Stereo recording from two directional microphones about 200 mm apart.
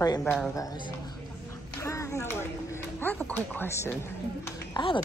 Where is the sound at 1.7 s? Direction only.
15° left (ahead or behind).